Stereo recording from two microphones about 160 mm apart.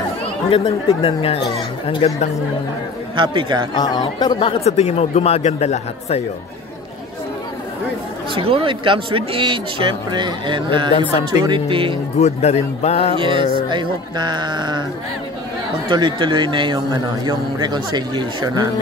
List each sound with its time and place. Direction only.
0.5 s speech: 35° left (ahead or behind)
3.2 s speech: 30° right (ahead or behind)
3.7 s speech: 25° left (ahead or behind)
8.4 s speech: 35° right (ahead or behind)
12.2 s speech: 45° left (ahead or behind)
13.2 s a man's voice: 30° right (ahead or behind)
15.9 s a man's voice: 30° right (ahead or behind)